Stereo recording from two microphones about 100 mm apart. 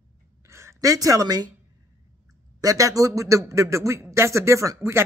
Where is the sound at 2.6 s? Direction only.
35° right (ahead or behind).